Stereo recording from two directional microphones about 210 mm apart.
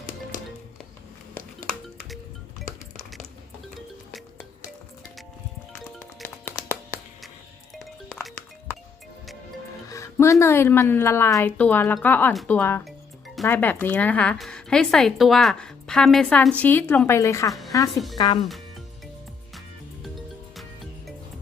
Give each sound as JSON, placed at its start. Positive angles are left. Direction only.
{"t": 7.8, "sound": "music", "side_deg": 0}
{"t": 9.9, "sound": "music", "side_deg": 15}
{"t": 10.4, "sound": "a woman's voice", "side_deg": 10}